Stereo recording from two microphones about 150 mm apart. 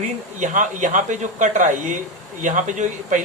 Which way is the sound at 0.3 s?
55° right (ahead or behind).